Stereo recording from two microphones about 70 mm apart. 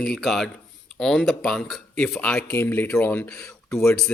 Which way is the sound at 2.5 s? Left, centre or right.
Left.